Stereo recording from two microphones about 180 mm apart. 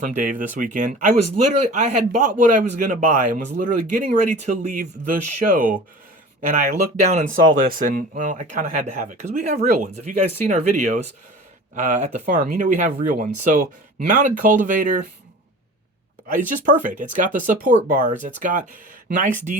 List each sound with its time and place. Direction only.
0.0 s speech: 45° right (ahead or behind)
16.6 s speech: 45° right (ahead or behind)